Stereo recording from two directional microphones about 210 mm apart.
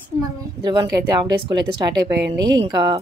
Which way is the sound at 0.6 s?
20° right (ahead or behind).